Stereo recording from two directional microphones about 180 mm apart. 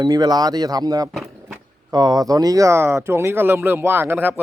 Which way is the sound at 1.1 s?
Centre (ahead or behind).